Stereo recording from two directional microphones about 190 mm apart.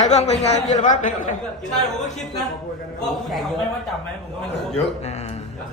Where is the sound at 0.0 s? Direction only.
35° left (ahead or behind).